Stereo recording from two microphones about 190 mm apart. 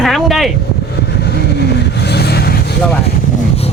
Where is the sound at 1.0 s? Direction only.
60° left (ahead or behind).